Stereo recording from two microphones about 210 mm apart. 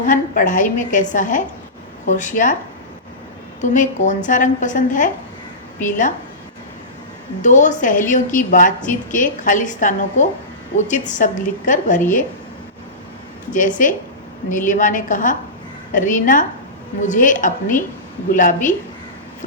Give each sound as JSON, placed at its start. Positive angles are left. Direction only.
{"t": 0.0, "sound": "a woman's voice", "side_deg": 40}
{"t": 3.6, "sound": "a woman's voice", "side_deg": 35}
{"t": 7.4, "sound": "a woman's voice", "side_deg": 35}
{"t": 13.5, "sound": "a woman's voice", "side_deg": 40}